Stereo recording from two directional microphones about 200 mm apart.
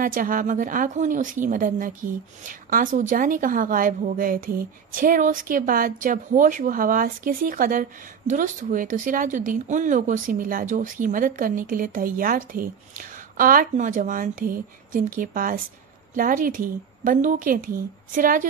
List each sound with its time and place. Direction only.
0.0 s a woman's voice: 45° right (ahead or behind)